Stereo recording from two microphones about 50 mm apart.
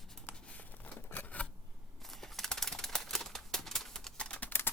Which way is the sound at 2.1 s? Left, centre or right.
Centre.